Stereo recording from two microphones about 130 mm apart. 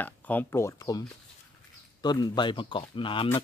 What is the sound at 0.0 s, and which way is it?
Speech, 15° left (ahead or behind).